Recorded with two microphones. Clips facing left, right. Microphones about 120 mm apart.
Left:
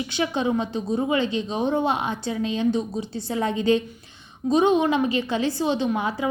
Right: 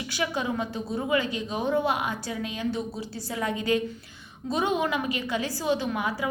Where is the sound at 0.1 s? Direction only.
25° left (ahead or behind).